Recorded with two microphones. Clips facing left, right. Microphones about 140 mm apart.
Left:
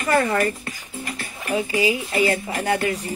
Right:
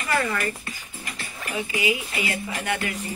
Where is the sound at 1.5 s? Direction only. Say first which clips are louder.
Left 5 dB; 35° left (ahead or behind).